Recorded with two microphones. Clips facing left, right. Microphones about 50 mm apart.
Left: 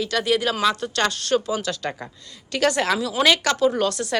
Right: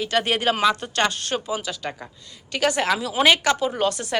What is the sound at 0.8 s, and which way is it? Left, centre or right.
A woman's voice, right.